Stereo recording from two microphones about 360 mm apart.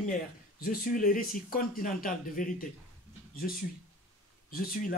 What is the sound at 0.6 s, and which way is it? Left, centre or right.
Speech, left.